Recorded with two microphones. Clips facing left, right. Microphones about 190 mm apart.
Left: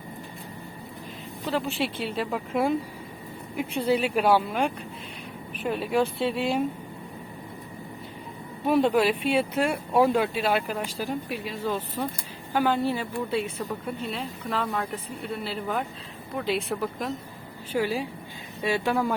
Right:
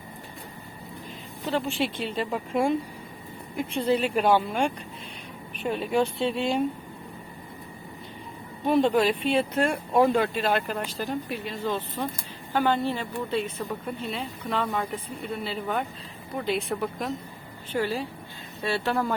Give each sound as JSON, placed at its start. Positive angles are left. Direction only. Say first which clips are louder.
{"t": 1.5, "sound": "speech", "louder": "right 1 dB", "side_deg": 0}
{"t": 8.6, "sound": "speech", "louder": "even", "side_deg": 5}